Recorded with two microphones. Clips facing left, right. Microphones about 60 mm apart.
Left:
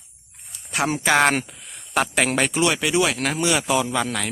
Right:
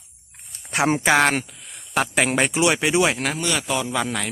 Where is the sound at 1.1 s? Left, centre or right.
Centre; by 3.2 s right.